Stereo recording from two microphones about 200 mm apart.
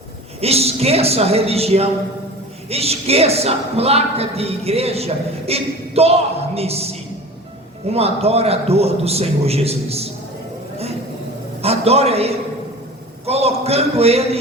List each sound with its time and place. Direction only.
0.4 s speech: 30° right (ahead or behind)
7.9 s speech: 30° right (ahead or behind)
11.6 s a man's voice: 30° right (ahead or behind)